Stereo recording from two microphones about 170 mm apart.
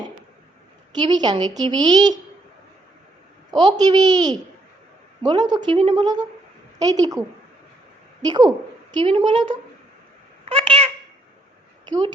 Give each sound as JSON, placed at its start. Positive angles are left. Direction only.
{"t": 0.9, "sound": "a woman's voice", "side_deg": -25}
{"t": 3.6, "sound": "a woman's voice", "side_deg": -25}
{"t": 10.4, "sound": "a sound", "side_deg": -30}